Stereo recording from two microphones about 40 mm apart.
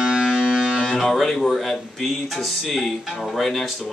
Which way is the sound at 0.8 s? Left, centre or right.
Centre.